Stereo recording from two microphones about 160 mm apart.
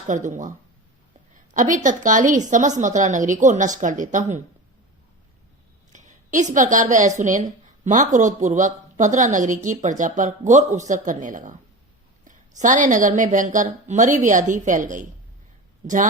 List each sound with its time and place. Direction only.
0.1 s a woman's voice: 50° right (ahead or behind)
1.5 s a woman's voice: 55° right (ahead or behind)
5.9 s a woman's voice: 50° right (ahead or behind)